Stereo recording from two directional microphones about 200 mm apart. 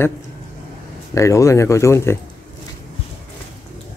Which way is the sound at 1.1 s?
15° left (ahead or behind).